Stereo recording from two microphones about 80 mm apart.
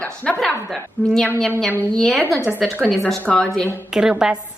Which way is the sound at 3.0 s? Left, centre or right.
Centre.